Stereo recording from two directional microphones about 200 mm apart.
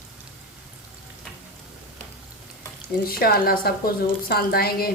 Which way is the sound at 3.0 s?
50° left (ahead or behind).